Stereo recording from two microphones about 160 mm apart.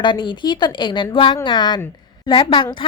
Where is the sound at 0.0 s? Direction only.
30° left (ahead or behind).